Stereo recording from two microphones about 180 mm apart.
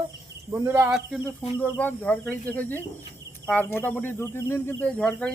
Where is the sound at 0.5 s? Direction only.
15° right (ahead or behind).